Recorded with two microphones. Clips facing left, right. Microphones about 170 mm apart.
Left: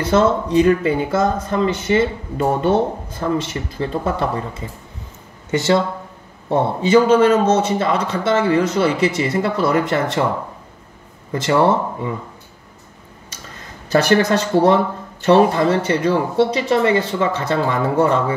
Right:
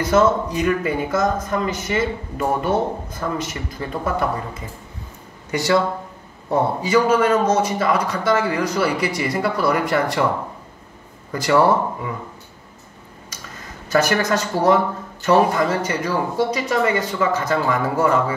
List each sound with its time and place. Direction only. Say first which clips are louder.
0.0 s speech: left 1 dB; 30° left (ahead or behind)
11.3 s speech: left 1 dB; 25° left (ahead or behind)
13.8 s speech: left 4 dB; 30° left (ahead or behind)